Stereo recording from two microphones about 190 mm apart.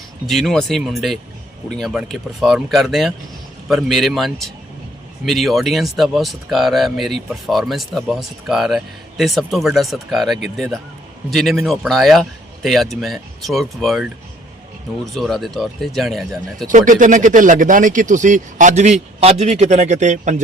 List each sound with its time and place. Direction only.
0.3 s speech: centre (ahead or behind)
16.6 s a man's voice: 45° right (ahead or behind)